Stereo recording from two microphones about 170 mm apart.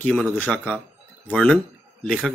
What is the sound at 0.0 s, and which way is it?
Speech, 5° left (ahead or behind).